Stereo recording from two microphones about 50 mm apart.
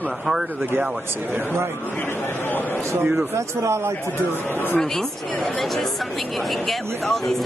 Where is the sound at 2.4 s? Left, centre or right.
Left.